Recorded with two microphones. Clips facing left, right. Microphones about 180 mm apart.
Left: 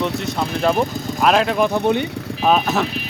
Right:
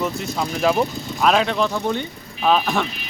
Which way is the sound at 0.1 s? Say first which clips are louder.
Left 4 dB; 70° left (ahead or behind).